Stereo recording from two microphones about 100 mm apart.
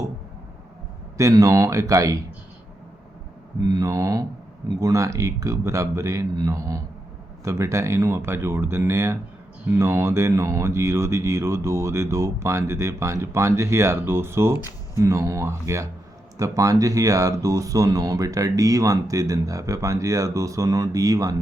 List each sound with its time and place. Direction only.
1.1 s speech: 35° right (ahead or behind)
3.8 s speech: 30° right (ahead or behind)